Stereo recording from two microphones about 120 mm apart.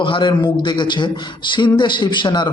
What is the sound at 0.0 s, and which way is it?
A man's voice, 45° left (ahead or behind).